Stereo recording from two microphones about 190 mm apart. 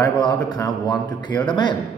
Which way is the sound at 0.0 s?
20° left (ahead or behind).